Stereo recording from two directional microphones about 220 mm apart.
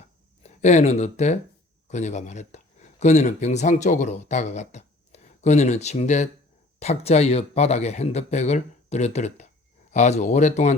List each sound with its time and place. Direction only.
0.4 s speech: 30° left (ahead or behind)